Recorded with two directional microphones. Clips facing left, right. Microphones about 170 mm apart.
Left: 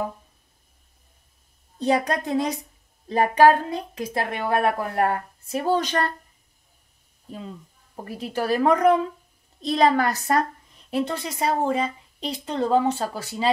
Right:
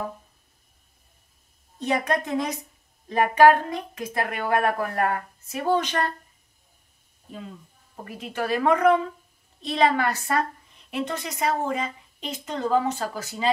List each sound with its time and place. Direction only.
1.8 s a woman's voice: 30° left (ahead or behind)
7.9 s a woman's voice: 35° left (ahead or behind)